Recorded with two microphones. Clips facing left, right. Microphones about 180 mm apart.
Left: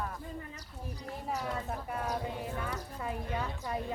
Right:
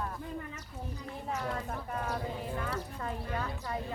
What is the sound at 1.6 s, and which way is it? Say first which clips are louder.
A woman's voice: even; 10° left (ahead or behind).